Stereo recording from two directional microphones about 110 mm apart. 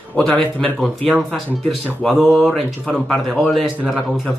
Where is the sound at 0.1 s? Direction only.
10° left (ahead or behind).